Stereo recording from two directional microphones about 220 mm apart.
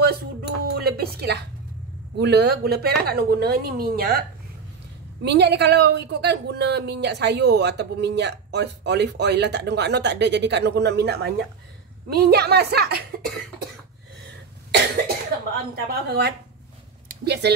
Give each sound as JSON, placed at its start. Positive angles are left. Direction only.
{"t": 0.0, "sound": "a sound", "side_deg": -45}
{"t": 2.1, "sound": "a woman's voice", "side_deg": -50}
{"t": 5.2, "sound": "a woman's voice", "side_deg": -50}
{"t": 15.5, "sound": "a woman's voice", "side_deg": -45}